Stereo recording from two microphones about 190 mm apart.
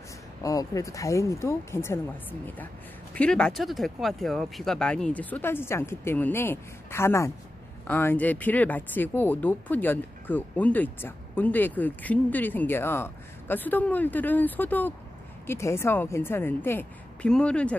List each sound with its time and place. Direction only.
0.4 s speech: 15° left (ahead or behind)